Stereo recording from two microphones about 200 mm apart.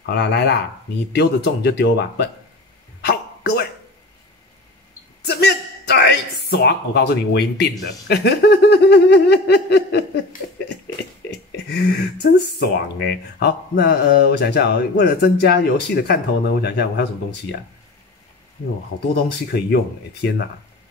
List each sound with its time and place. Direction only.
0.0 s speech: 55° left (ahead or behind)
3.1 s a sound: 55° left (ahead or behind)
5.2 s a sound: 55° left (ahead or behind)
8.1 s speech: 55° left (ahead or behind)
11.2 s speech: 55° left (ahead or behind)
18.9 s speech: 50° left (ahead or behind)